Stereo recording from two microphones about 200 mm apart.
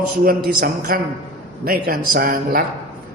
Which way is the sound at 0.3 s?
50° right (ahead or behind).